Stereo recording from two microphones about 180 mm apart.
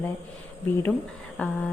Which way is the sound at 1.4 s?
10° left (ahead or behind).